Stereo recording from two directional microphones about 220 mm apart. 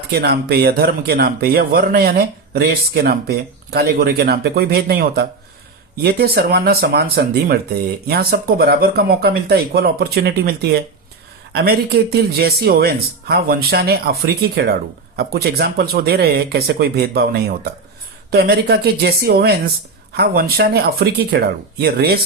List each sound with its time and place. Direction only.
0.1 s speech: 45° right (ahead or behind)